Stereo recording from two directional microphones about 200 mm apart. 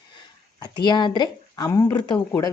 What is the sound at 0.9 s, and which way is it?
Speech, 20° left (ahead or behind).